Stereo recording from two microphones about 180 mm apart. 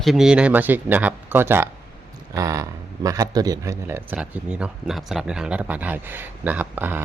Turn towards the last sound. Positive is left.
turn(degrees=-10)  # may be behind; listen again after turning